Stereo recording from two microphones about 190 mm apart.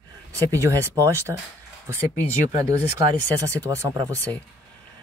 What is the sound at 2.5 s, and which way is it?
Speech, 20° right (ahead or behind).